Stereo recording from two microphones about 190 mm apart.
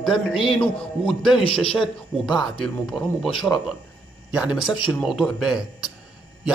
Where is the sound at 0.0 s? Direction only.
Centre (ahead or behind).